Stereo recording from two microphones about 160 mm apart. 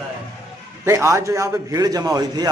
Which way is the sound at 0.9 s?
15° right (ahead or behind).